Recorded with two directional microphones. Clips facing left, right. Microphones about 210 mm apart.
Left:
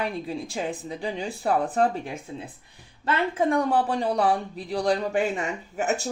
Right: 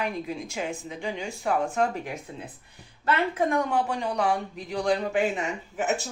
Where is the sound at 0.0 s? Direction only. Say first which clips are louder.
Left 1 dB; 35° left (ahead or behind).